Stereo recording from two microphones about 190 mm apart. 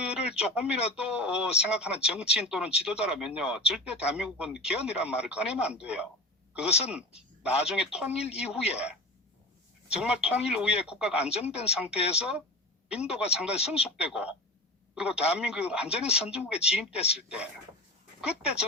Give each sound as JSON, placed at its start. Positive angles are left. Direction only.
{"t": 0.0, "sound": "radio", "side_deg": -5}
{"t": 0.9, "sound": "speech", "side_deg": -5}
{"t": 6.7, "sound": "speech", "side_deg": 30}
{"t": 7.6, "sound": "speech", "side_deg": -5}
{"t": 8.3, "sound": "speech", "side_deg": 35}
{"t": 8.7, "sound": "speech", "side_deg": -5}
{"t": 10.0, "sound": "a man's voice", "side_deg": -5}